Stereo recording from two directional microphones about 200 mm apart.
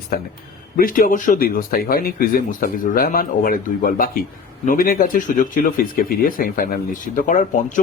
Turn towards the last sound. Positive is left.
turn(degrees=40)  # may be behind; listen again after turning